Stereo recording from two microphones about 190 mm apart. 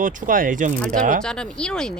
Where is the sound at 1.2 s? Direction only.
5° left (ahead or behind).